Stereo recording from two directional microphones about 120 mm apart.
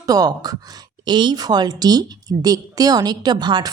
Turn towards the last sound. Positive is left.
turn(degrees=-35)  # may be behind; listen again after turning